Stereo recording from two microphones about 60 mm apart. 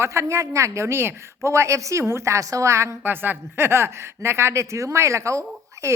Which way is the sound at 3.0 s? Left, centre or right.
Right.